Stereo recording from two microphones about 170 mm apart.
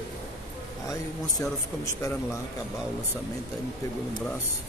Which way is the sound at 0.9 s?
20° left (ahead or behind).